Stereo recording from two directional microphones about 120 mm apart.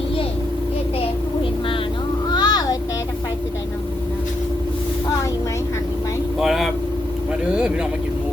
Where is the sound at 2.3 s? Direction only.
35° left (ahead or behind).